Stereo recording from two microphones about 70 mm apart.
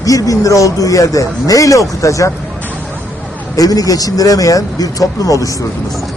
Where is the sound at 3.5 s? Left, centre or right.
Left.